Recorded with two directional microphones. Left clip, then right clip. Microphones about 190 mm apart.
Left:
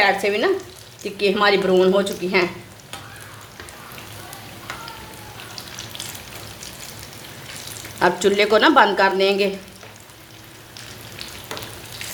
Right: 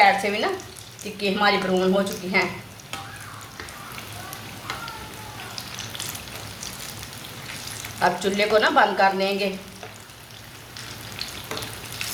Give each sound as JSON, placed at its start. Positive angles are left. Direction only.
{"t": 0.0, "sound": "frying", "side_deg": 50}
{"t": 1.2, "sound": "a woman's voice", "side_deg": 50}
{"t": 7.9, "sound": "speech", "side_deg": 55}